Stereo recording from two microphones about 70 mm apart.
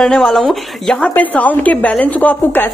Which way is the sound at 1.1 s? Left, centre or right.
Left.